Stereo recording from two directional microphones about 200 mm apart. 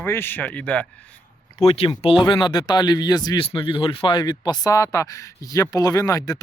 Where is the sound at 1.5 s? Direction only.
30° left (ahead or behind).